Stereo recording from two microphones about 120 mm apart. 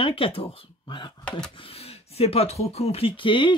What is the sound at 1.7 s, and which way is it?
Speech, 55° left (ahead or behind).